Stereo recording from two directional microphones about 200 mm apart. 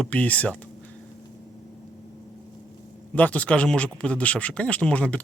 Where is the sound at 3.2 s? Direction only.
5° left (ahead or behind).